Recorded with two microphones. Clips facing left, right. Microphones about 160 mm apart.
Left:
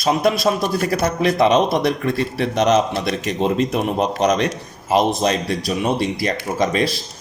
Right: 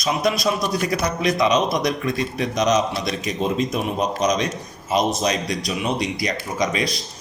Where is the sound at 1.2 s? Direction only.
55° left (ahead or behind).